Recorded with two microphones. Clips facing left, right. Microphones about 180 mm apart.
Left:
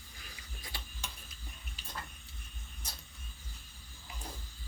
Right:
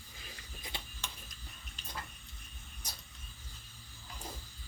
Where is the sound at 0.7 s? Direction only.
20° right (ahead or behind).